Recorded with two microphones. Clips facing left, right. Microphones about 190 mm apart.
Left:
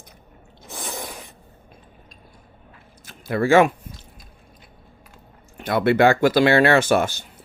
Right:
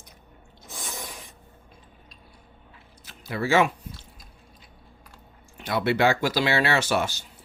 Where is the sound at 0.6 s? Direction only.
60° left (ahead or behind).